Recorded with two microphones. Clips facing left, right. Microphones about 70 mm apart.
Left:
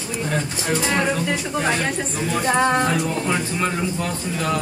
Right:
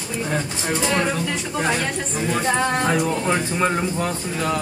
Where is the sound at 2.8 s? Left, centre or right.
Right.